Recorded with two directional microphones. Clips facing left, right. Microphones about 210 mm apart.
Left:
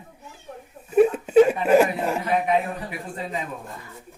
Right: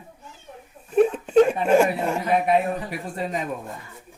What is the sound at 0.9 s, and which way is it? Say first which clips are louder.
Speech: left 1 dB; 5° left (ahead or behind).